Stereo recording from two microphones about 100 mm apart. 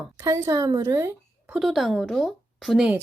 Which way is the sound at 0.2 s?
30° right (ahead or behind).